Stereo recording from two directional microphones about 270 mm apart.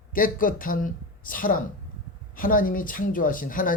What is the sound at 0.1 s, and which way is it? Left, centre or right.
Speech, left.